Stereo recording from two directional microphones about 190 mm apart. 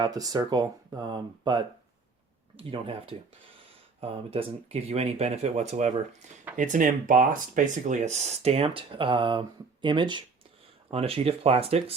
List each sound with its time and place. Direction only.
0.0 s speech: 20° right (ahead or behind)